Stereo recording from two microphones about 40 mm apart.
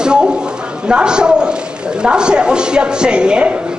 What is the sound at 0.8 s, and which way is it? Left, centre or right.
A man's voice, right.